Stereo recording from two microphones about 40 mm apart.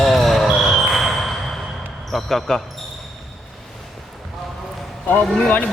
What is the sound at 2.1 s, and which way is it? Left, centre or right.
Speech, centre.